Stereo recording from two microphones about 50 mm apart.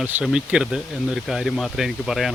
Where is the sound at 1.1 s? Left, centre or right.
Centre.